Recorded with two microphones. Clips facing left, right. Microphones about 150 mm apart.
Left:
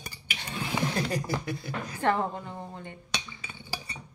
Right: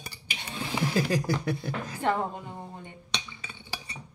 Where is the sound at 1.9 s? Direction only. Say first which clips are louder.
Left 2 dB; 15° right (ahead or behind).